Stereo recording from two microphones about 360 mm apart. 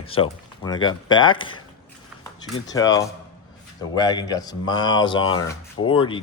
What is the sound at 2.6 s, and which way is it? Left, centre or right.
Speech, centre.